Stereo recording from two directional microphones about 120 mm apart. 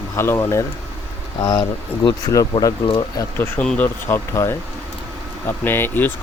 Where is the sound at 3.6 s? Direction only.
10° left (ahead or behind).